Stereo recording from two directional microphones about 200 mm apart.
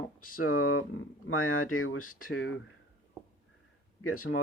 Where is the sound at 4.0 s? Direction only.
90° left.